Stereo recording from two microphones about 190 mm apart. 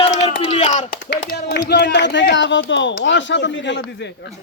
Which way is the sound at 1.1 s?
65° left (ahead or behind).